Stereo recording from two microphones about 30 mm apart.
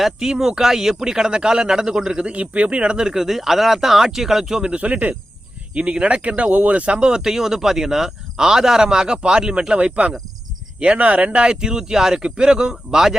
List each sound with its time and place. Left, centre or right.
0.2 s a man's voice: centre
2.4 s speech: right
3.1 s a man's voice: centre
4.8 s speech: right
5.7 s speech: right
6.2 s speech: right
6.9 s a man's voice: right
7.3 s a man's voice: centre
9.7 s speech: right
11.3 s a man's voice: right
12.2 s a man's voice: right